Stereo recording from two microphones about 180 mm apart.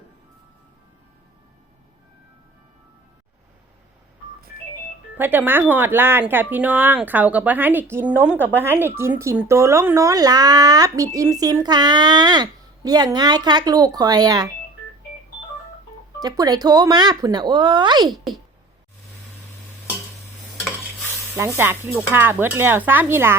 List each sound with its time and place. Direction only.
5.1 s speech: 10° right (ahead or behind)
16.2 s speech: 20° right (ahead or behind)
21.3 s speech: 15° right (ahead or behind)